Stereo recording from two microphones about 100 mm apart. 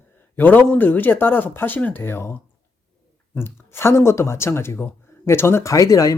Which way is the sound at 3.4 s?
25° left (ahead or behind).